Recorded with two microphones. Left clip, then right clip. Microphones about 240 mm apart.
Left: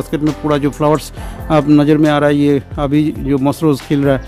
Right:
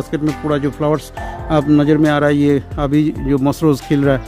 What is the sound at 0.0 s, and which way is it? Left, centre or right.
Speech, centre.